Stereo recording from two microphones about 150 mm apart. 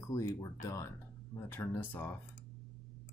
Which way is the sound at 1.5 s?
15° left (ahead or behind).